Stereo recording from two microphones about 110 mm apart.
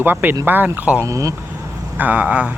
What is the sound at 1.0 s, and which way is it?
Speech, 30° right (ahead or behind).